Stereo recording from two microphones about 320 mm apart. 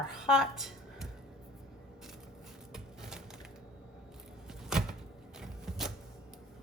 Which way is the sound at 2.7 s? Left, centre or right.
Centre.